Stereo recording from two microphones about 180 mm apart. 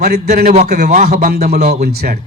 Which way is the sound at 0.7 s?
45° right (ahead or behind).